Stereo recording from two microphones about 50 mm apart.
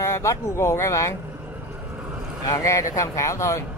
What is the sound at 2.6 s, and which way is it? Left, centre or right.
Speech, left.